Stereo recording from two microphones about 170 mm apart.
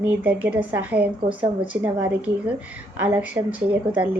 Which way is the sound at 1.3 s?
30° right (ahead or behind).